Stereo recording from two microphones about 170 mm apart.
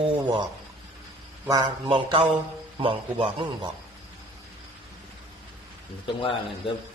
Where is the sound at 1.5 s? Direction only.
20° right (ahead or behind).